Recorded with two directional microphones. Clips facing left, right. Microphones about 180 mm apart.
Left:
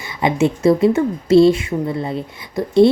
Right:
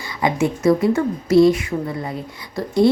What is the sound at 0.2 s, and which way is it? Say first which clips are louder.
A woman's voice: left 3 dB; 25° left (ahead or behind).